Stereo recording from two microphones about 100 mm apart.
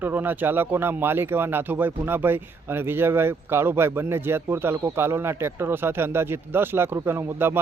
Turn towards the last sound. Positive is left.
turn(degrees=-25)  # may be behind; listen again after turning